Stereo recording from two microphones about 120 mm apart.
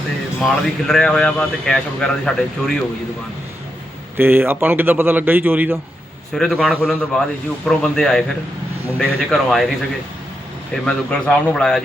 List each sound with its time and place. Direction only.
0.4 s speech: 5° left (ahead or behind)
4.2 s a man's voice: 15° right (ahead or behind)
6.3 s speech: centre (ahead or behind)
10.8 s a man's voice: 5° left (ahead or behind)